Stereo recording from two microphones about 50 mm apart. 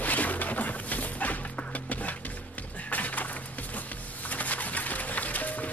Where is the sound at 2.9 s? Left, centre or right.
Left.